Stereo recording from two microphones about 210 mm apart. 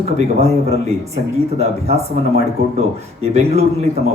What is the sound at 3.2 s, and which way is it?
Speech, 30° right (ahead or behind).